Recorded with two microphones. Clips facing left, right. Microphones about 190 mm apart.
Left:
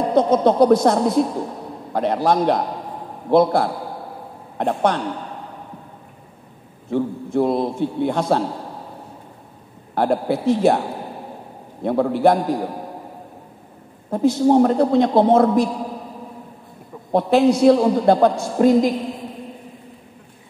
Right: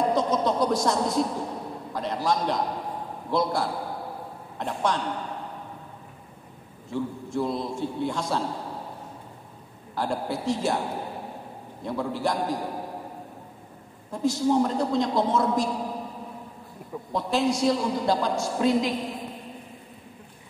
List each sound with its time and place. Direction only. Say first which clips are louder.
0.1 s a man's voice: left 8 dB; 55° left (ahead or behind)
6.9 s a man's voice: left 8 dB; 60° left (ahead or behind)
9.9 s a man's voice: left 9 dB; 60° left (ahead or behind)
11.8 s a man's voice: left 11 dB; 60° left (ahead or behind)
14.1 s a man's voice: left 8 dB; 60° left (ahead or behind)
17.1 s a man's voice: left 10 dB; 60° left (ahead or behind)